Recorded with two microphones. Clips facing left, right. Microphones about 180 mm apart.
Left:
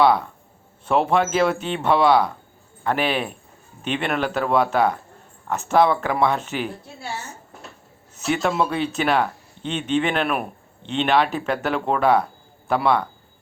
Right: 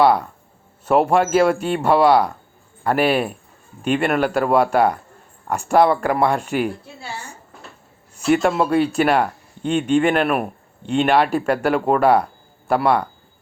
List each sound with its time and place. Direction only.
1.1 s speech: 10° right (ahead or behind)
8.4 s speech: 10° right (ahead or behind)
9.6 s speech: 50° right (ahead or behind)
10.0 s speech: 5° right (ahead or behind)